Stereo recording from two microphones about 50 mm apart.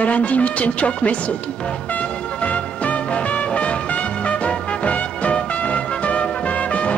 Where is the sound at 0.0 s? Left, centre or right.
Left.